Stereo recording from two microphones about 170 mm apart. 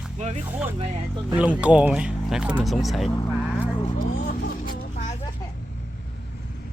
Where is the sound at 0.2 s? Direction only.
40° right (ahead or behind).